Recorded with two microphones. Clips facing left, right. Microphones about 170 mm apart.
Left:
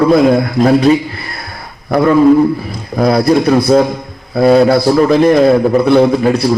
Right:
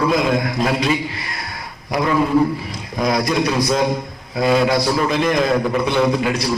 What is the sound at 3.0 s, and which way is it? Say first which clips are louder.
Speech: left 9 dB; 35° left (ahead or behind).